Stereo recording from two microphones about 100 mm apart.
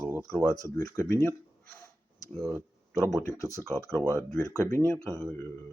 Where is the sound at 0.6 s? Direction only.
35° left (ahead or behind).